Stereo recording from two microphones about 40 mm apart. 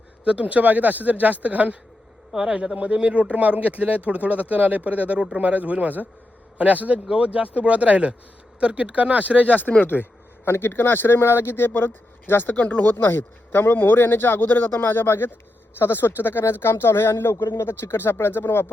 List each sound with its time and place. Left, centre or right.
0.3 s speech: right
2.3 s a man's voice: centre
2.6 s speech: right
7.1 s speech: right
9.8 s speech: left
12.5 s speech: left
12.8 s speech: left
15.8 s speech: left